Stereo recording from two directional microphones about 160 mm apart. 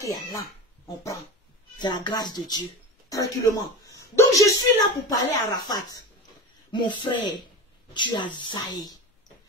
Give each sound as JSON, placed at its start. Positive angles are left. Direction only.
{"t": 0.0, "sound": "speech", "side_deg": 20}